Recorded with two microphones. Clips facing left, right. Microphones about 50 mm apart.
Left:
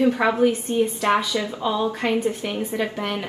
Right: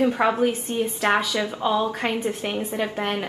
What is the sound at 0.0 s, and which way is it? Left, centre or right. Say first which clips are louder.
Speech: left 2 dB; right.